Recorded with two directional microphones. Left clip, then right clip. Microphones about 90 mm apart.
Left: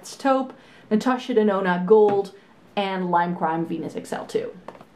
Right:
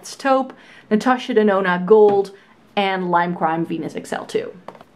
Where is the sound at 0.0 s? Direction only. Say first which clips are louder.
Right 4 dB; 35° right (ahead or behind).